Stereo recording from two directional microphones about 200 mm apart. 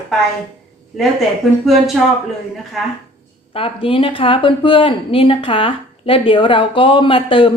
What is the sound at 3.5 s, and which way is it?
A woman's voice, 25° left (ahead or behind).